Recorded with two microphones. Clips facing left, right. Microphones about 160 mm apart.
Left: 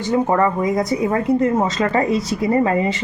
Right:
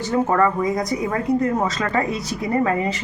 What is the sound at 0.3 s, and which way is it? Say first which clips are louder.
Speech: left 1 dB; 20° left (ahead or behind).